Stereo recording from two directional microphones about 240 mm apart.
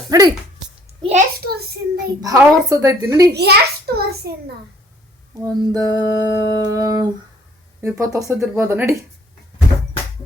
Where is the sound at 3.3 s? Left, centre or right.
Right.